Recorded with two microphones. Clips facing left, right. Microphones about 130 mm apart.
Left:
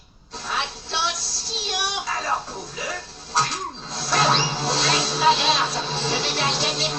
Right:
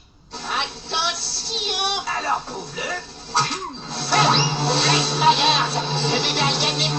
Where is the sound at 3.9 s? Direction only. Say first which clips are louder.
Right 2 dB; 30° right (ahead or behind).